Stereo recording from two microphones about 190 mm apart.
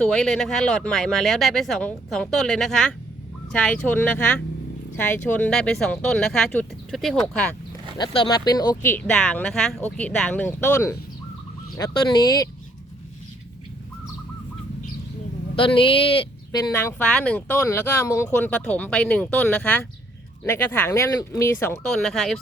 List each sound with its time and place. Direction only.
0.0 s speech: 5° left (ahead or behind)
7.9 s speech: 25° left (ahead or behind)
11.8 s fowl: 20° left (ahead or behind)
15.5 s fowl: 25° left (ahead or behind)
16.7 s speech: 10° left (ahead or behind)
21.8 s speech: 5° left (ahead or behind)